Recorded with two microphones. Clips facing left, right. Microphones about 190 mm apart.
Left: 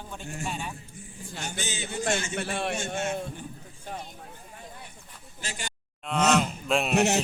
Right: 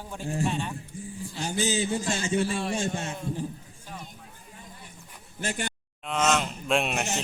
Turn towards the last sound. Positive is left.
turn(degrees=0)  # may be behind; listen again after turning